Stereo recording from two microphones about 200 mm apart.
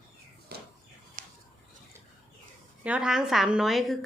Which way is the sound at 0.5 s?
50° right (ahead or behind).